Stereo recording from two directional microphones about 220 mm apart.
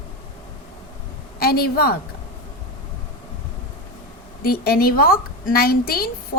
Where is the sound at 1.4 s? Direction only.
45° left (ahead or behind).